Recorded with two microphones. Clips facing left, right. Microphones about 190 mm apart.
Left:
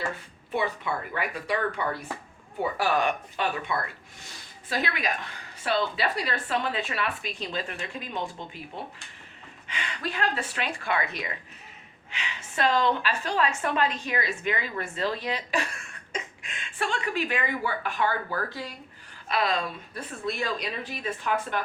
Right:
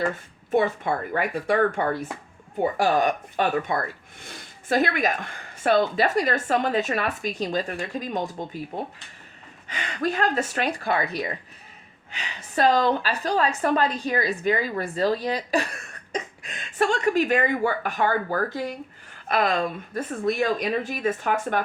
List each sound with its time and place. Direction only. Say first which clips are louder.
0.5 s a woman's voice: right 6 dB; 45° right (ahead or behind)